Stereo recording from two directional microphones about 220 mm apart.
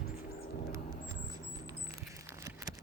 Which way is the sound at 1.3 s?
20° right (ahead or behind).